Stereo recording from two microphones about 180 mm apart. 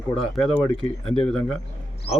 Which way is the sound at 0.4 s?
30° left (ahead or behind).